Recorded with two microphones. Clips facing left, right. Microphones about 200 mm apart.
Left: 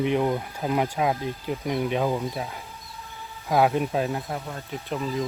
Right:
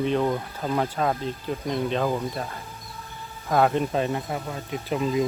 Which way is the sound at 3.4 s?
5° left (ahead or behind).